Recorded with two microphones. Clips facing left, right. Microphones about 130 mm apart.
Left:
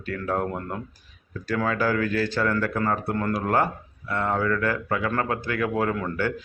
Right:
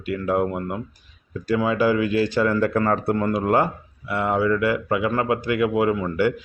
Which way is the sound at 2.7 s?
30° right (ahead or behind).